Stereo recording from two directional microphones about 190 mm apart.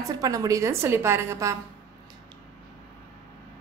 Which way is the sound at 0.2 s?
20° right (ahead or behind).